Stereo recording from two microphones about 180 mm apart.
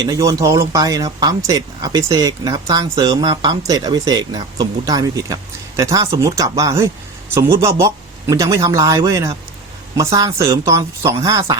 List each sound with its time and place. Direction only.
0.0 s speech: 20° right (ahead or behind)